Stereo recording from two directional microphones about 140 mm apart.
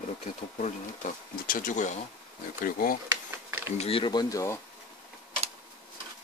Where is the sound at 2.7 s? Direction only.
90° left.